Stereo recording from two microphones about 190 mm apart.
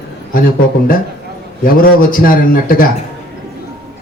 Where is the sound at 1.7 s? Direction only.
45° left (ahead or behind).